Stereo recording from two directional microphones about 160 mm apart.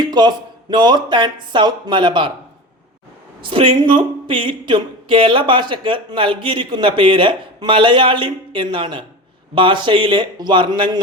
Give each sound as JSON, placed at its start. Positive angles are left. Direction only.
{"t": 0.0, "sound": "speech", "side_deg": -25}
{"t": 3.4, "sound": "speech", "side_deg": -35}